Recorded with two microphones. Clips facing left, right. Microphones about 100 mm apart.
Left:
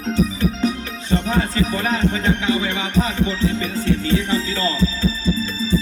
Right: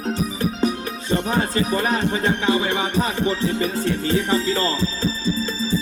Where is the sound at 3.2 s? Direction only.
45° right (ahead or behind).